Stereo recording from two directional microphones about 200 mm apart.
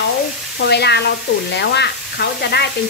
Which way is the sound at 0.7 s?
55° left (ahead or behind).